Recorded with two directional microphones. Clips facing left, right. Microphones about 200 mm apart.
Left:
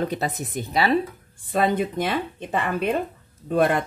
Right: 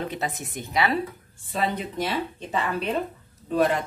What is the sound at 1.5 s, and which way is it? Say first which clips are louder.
Speech: left 6 dB; 50° left (ahead or behind).